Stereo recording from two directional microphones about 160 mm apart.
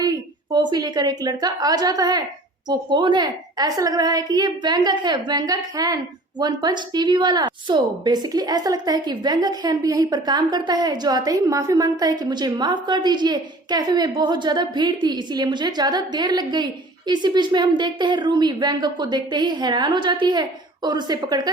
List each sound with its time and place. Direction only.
0.0 s a woman's voice: 25° right (ahead or behind)